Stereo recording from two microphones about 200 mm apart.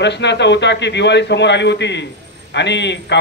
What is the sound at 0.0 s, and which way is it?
A man's voice, 60° left (ahead or behind).